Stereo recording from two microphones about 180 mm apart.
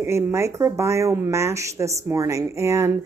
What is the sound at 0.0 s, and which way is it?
Speech, 15° right (ahead or behind).